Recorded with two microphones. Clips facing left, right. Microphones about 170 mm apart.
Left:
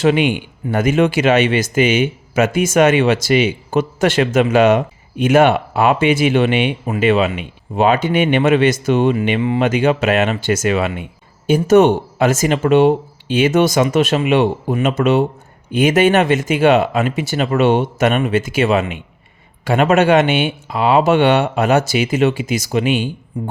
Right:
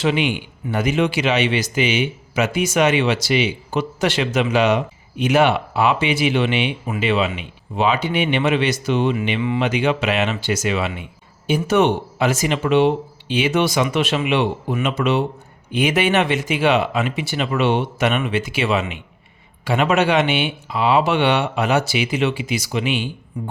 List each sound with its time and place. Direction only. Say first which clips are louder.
0.0 s speech: left 5 dB; 50° left (ahead or behind)